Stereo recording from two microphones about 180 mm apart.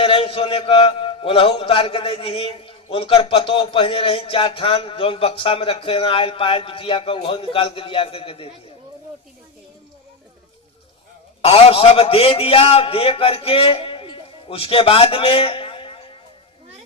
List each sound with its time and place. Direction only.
0.0 s a man's voice: 30° left (ahead or behind)
11.4 s a man's voice: 30° left (ahead or behind)